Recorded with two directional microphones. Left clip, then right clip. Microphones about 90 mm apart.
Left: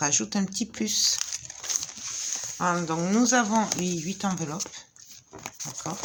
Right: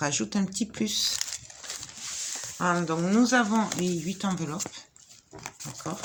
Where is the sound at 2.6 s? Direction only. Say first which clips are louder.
Even; 35° left (ahead or behind).